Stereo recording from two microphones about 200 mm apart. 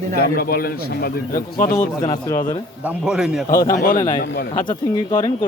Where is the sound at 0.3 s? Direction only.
50° left (ahead or behind).